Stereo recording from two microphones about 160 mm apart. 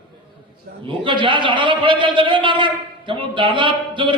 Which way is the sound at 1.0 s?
30° right (ahead or behind).